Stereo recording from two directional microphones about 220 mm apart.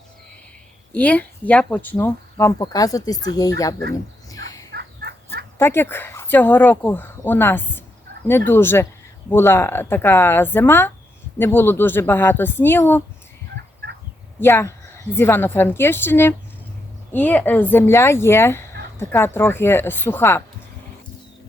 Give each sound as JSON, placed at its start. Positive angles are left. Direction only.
{"t": 0.9, "sound": "speech", "side_deg": 5}
{"t": 4.3, "sound": "fowl", "side_deg": 15}
{"t": 4.7, "sound": "fowl", "side_deg": -50}
{"t": 5.5, "sound": "speech", "side_deg": 10}
{"t": 14.3, "sound": "speech", "side_deg": 10}